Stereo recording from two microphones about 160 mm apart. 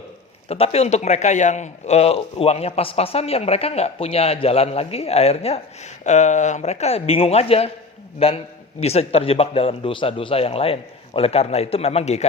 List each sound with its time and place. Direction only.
0.4 s a man's voice: 40° left (ahead or behind)